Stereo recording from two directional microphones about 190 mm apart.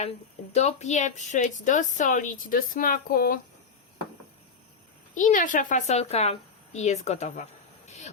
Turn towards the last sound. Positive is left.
turn(degrees=35)  # may be behind; listen again after turning